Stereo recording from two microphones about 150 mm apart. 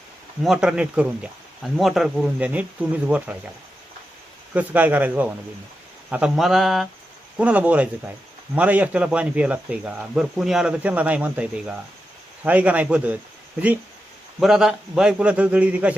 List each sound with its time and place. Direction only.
0.4 s speech: 5° right (ahead or behind)
4.5 s speech: 10° right (ahead or behind)
14.3 s speech: centre (ahead or behind)